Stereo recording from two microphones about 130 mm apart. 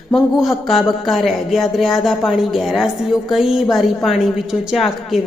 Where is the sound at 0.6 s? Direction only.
Centre (ahead or behind).